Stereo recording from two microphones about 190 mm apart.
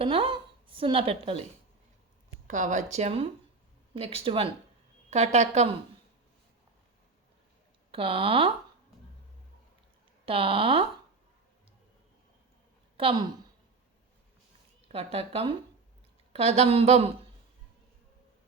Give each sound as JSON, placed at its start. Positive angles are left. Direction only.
{"t": 0.0, "sound": "a woman's voice", "side_deg": -30}
{"t": 2.5, "sound": "speech", "side_deg": -40}
{"t": 7.9, "sound": "speech", "side_deg": -30}
{"t": 10.2, "sound": "speech", "side_deg": -30}
{"t": 13.0, "sound": "speech", "side_deg": -30}
{"t": 14.9, "sound": "speech", "side_deg": -30}